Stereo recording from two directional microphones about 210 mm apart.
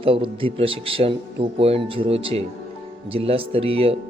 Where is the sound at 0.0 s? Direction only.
25° right (ahead or behind).